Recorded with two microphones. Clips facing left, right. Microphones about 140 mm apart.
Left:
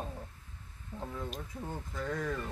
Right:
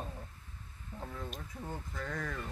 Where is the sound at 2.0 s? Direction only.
5° left (ahead or behind).